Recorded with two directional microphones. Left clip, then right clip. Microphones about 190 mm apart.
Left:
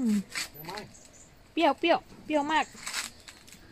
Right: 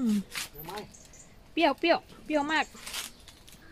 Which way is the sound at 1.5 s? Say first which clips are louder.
Even; 15° left (ahead or behind).